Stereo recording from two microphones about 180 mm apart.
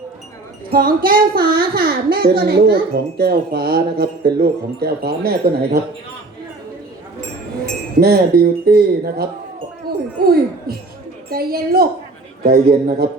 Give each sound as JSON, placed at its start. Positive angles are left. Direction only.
{"t": 0.7, "sound": "a child's voice", "side_deg": -55}
{"t": 7.9, "sound": "a child's voice", "side_deg": -55}
{"t": 10.2, "sound": "a child's voice", "side_deg": -60}